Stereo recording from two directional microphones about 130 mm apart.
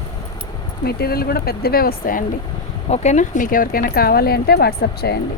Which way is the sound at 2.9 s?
65° left (ahead or behind).